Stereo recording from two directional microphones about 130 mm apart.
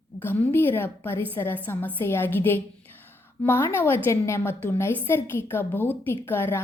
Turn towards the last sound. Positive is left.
turn(degrees=15)  # may be behind; listen again after turning